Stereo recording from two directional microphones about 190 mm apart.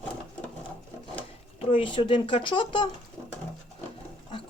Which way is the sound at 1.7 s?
25° left (ahead or behind).